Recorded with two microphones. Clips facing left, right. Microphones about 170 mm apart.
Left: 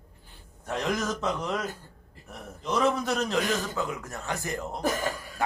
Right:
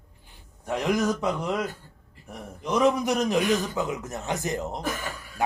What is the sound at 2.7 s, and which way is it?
A man's voice, 15° right (ahead or behind).